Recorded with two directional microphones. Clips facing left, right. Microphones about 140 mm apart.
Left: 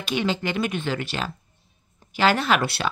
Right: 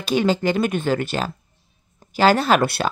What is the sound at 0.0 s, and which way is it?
Speech, 40° right (ahead or behind).